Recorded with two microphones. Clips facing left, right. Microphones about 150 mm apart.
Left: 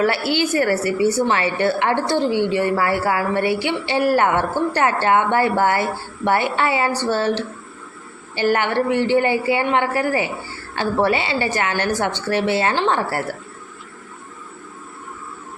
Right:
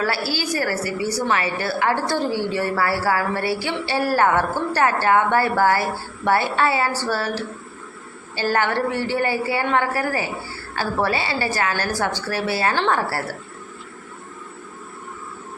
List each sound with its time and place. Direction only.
0.0 s a woman's voice: 20° left (ahead or behind)